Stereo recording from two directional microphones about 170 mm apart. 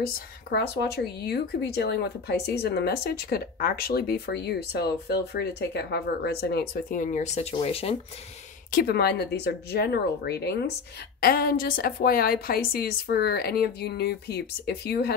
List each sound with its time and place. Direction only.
0.0 s speech: 65° left (ahead or behind); by 8.0 s 35° left (ahead or behind)
8.7 s speech: 70° left (ahead or behind)
11.1 s a woman's voice: 60° left (ahead or behind)